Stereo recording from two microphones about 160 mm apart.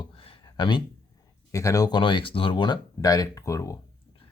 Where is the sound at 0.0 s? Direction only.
35° left (ahead or behind).